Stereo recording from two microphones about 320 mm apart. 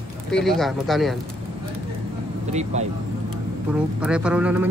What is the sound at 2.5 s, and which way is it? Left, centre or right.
Speech, right.